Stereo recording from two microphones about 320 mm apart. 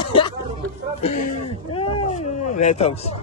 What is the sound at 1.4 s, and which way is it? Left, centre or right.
Speech, left.